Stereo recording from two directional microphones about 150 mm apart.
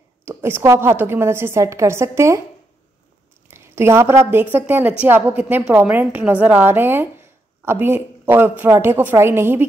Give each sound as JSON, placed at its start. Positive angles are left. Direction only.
{"t": 0.2, "sound": "a woman's voice", "side_deg": -15}
{"t": 3.4, "sound": "a woman's voice", "side_deg": -15}